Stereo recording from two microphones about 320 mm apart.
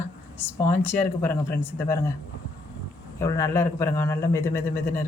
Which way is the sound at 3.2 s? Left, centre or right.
Centre.